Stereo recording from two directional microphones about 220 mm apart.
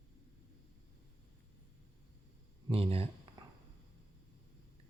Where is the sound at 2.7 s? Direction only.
25° right (ahead or behind).